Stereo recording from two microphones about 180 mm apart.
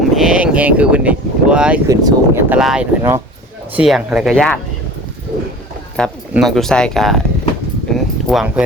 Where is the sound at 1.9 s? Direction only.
15° right (ahead or behind).